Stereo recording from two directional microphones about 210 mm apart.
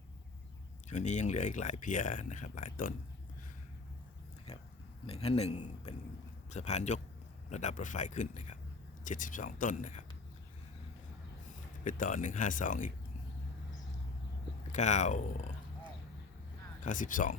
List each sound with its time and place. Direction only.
0.9 s speech: 35° left (ahead or behind)
4.5 s a sound: 30° left (ahead or behind)
5.0 s a man's voice: 30° left (ahead or behind)
11.9 s speech: 40° left (ahead or behind)
14.7 s speech: 35° left (ahead or behind)
16.8 s speech: 40° left (ahead or behind)